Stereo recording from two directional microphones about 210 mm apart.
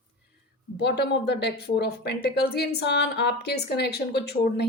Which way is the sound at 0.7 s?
55° left (ahead or behind).